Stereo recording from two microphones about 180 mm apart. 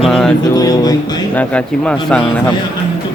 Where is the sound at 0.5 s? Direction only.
20° left (ahead or behind).